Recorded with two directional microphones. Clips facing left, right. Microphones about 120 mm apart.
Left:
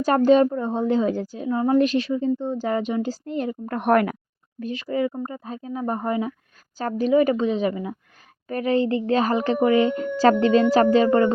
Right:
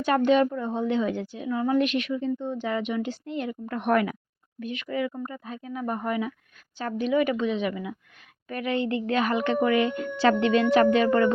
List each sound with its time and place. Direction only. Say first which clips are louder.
0.0 s a woman's voice: left 4 dB; 40° left (ahead or behind)
3.8 s speech: left 4 dB; 50° left (ahead or behind)
4.6 s a woman's voice: left 5 dB; 35° left (ahead or behind)